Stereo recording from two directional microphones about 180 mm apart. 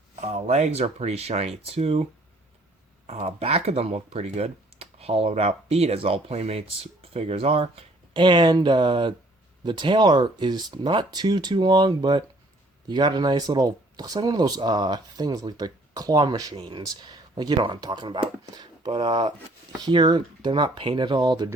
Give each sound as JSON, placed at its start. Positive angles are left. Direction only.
{"t": 0.2, "sound": "speech", "side_deg": -40}
{"t": 3.1, "sound": "speech", "side_deg": -35}